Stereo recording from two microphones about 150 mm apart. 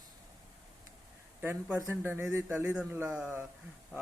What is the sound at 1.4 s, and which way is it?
Speech, 15° right (ahead or behind).